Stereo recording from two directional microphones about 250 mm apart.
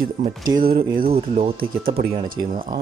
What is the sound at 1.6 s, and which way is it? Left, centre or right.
Speech, right.